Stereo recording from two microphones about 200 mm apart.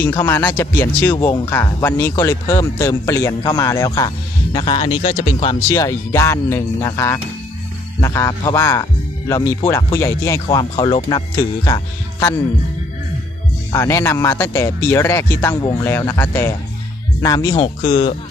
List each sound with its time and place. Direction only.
0.0 s speech: 10° left (ahead or behind)
1.1 s speech: 20° left (ahead or behind)
1.5 s speech: 10° left (ahead or behind)
13.7 s speech: 15° left (ahead or behind)